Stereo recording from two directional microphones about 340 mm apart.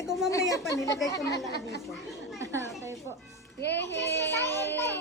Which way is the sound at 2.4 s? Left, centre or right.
Centre.